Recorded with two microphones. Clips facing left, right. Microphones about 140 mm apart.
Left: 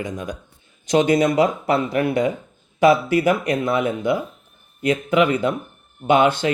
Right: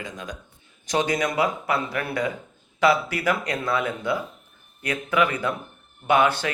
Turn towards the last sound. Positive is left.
turn(degrees=20)  # may be behind; listen again after turning